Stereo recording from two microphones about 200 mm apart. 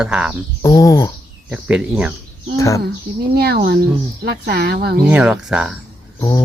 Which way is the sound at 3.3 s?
50° right (ahead or behind).